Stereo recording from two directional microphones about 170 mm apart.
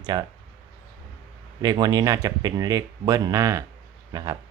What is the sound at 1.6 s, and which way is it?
Speech, 25° right (ahead or behind).